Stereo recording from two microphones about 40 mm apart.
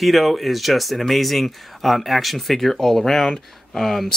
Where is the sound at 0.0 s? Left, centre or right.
Centre.